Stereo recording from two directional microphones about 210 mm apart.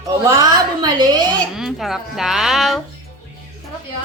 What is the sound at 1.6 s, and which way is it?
Speech, centre (ahead or behind).